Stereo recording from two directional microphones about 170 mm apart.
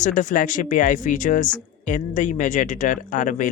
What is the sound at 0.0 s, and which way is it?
Speech, 45° left (ahead or behind).